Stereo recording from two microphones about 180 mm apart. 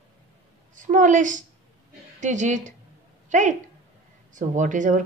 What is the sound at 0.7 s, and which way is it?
A woman's voice, 45° right (ahead or behind).